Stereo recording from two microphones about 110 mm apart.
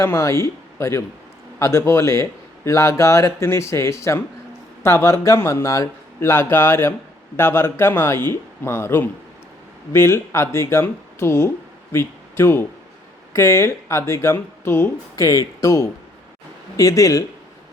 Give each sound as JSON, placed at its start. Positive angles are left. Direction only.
{"t": 0.0, "sound": "a man's voice", "side_deg": 25}
{"t": 15.1, "sound": "a man's voice", "side_deg": 30}